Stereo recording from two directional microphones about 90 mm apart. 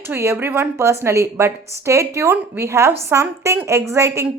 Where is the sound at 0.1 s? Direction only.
25° right (ahead or behind).